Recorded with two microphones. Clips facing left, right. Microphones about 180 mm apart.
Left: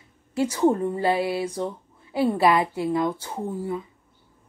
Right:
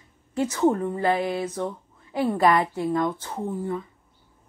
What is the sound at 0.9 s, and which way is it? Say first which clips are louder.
Speech: left 1 dB; 15° left (ahead or behind).